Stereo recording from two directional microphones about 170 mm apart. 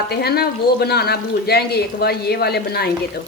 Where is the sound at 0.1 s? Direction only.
70° left (ahead or behind).